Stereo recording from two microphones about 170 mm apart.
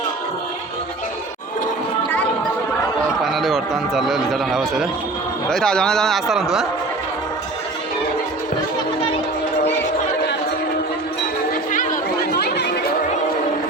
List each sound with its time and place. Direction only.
3.2 s a man's voice: centre (ahead or behind)
12.3 s chatter: 75° left (ahead or behind)